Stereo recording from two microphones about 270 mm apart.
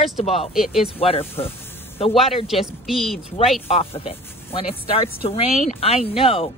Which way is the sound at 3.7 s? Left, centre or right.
Left.